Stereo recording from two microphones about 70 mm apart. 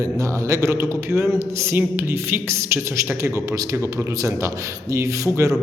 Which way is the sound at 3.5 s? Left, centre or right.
Right.